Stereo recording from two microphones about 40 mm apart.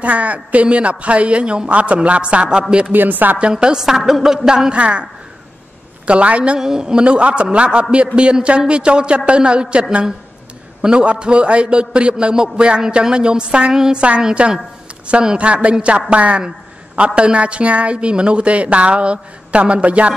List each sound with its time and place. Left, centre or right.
0.0 s a woman's voice: right
2.9 s speech: right
3.3 s a woman's voice: right
4.7 s a woman's voice: right
6.0 s a woman's voice: right
6.6 s a man's voice: centre
7.1 s a woman's voice: right
13.9 s a woman's voice: right
15.3 s a woman's voice: right